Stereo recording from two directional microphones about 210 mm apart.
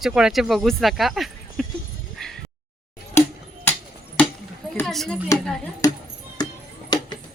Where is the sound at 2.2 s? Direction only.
Centre (ahead or behind).